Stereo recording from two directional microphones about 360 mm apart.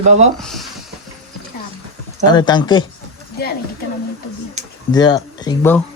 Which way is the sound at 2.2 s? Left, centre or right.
Centre.